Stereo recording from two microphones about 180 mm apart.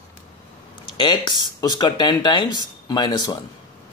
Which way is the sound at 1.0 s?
25° left (ahead or behind).